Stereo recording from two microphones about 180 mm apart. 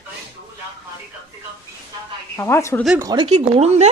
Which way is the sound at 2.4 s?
15° left (ahead or behind).